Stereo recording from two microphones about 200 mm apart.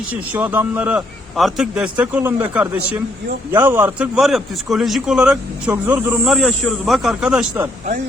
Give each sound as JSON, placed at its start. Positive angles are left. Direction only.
{"t": 0.1, "sound": "a man's voice", "side_deg": -10}